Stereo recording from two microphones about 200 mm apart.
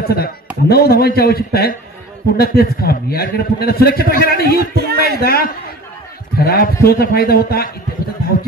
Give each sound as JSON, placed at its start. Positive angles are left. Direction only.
{"t": 0.0, "sound": "a man's voice", "side_deg": 50}
{"t": 4.7, "sound": "speech", "side_deg": -50}
{"t": 5.2, "sound": "a man's voice", "side_deg": 50}